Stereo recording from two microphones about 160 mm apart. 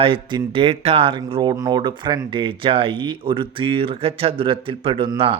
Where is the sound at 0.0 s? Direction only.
30° right (ahead or behind).